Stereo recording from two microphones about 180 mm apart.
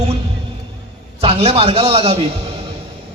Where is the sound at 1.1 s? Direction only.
35° right (ahead or behind).